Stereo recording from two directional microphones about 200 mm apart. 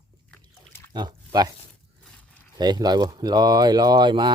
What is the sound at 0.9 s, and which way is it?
Speech, 20° right (ahead or behind).